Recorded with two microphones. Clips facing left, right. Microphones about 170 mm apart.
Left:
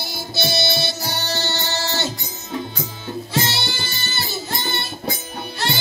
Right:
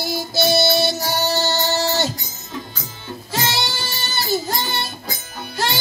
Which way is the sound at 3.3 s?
40° right (ahead or behind).